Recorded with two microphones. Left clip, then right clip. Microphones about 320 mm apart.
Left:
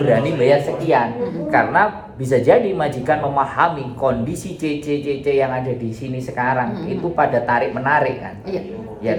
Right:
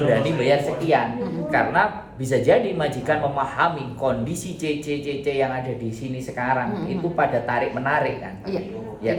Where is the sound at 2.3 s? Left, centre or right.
Centre.